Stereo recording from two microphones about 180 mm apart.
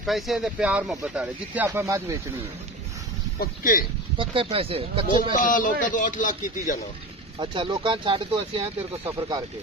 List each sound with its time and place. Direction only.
0.0 s speech: centre (ahead or behind)
3.3 s speech: 50° left (ahead or behind)
4.2 s speech: 30° right (ahead or behind)
5.3 s speech: 50° left (ahead or behind)
7.3 s speech: 25° right (ahead or behind)